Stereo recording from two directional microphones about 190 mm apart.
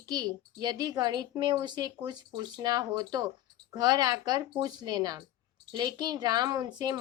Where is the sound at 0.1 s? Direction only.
20° right (ahead or behind).